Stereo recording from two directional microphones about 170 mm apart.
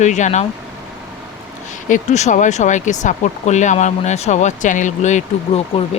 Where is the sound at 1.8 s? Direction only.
45° left (ahead or behind).